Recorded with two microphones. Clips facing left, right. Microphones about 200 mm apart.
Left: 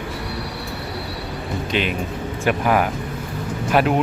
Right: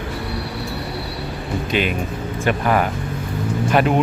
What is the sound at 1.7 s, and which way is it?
Speech, 10° right (ahead or behind).